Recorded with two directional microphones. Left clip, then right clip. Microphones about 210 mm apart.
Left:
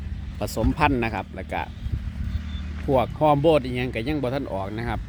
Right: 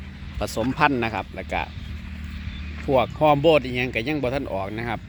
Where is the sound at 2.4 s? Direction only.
35° left (ahead or behind).